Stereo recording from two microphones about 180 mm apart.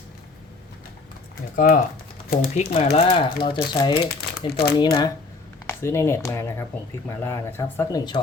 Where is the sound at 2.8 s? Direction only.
35° left (ahead or behind).